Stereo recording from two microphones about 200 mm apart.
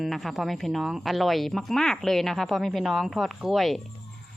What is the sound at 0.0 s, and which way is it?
Speech, centre (ahead or behind).